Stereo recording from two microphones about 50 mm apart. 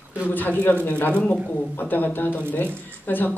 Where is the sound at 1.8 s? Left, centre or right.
Left.